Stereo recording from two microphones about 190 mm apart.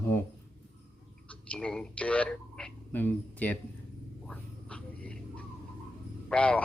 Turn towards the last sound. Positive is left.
turn(degrees=5)  # may be behind; listen again after turning